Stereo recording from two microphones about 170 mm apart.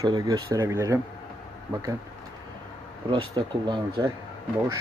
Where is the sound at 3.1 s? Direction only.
30° right (ahead or behind).